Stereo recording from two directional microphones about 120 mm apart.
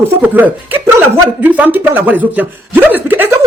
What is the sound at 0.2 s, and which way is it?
Speech, 15° right (ahead or behind).